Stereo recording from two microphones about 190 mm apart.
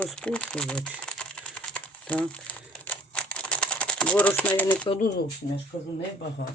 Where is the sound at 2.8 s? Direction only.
5° left (ahead or behind).